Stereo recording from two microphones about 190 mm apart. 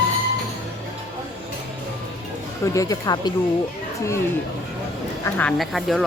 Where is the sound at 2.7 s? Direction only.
20° left (ahead or behind).